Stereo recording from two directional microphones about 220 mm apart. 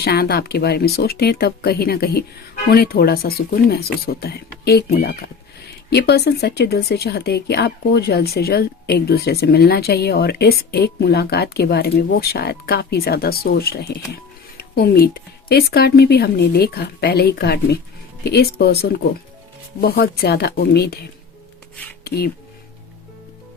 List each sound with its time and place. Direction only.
0.0 s speech: 45° left (ahead or behind)
22.0 s music: 45° left (ahead or behind)